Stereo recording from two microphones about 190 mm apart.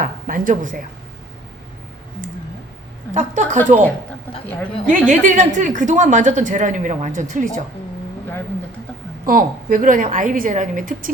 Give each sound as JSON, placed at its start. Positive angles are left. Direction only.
{"t": 0.0, "sound": "speech", "side_deg": -45}
{"t": 3.2, "sound": "a woman's voice", "side_deg": -40}
{"t": 4.4, "sound": "a woman's voice", "side_deg": 10}
{"t": 5.0, "sound": "a woman's voice", "side_deg": -40}
{"t": 9.2, "sound": "a woman's voice", "side_deg": -45}